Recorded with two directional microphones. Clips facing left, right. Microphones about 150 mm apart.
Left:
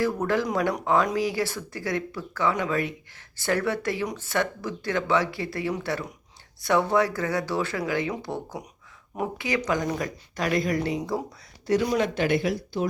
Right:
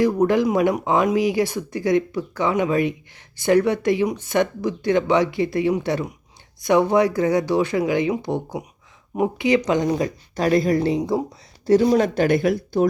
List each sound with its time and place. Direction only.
0.0 s a woman's voice: 15° right (ahead or behind); by 12.5 s 50° right (ahead or behind)